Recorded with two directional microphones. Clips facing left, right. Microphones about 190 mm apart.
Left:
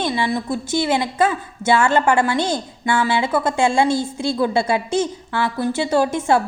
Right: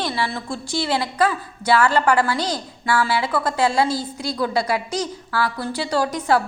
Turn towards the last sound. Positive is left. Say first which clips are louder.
# left 3 dB
turn(degrees=25)  # may be behind; listen again after turning